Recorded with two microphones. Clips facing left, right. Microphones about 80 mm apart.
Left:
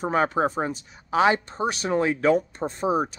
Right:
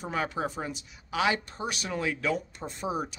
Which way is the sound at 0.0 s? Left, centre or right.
Left.